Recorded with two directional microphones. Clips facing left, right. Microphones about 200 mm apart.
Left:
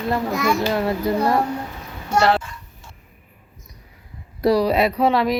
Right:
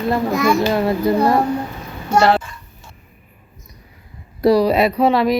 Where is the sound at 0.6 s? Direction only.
30° right (ahead or behind).